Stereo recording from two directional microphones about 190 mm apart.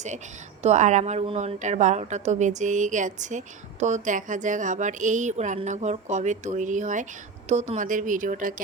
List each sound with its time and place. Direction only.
0.6 s a woman's voice: 40° right (ahead or behind)